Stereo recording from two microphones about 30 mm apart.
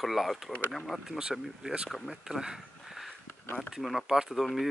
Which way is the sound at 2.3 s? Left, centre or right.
Right.